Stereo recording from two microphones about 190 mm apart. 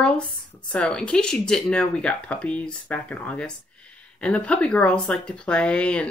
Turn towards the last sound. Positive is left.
turn(degrees=5)  # may be behind; listen again after turning